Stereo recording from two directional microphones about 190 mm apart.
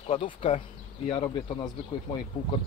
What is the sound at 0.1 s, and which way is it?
Speech, 30° left (ahead or behind).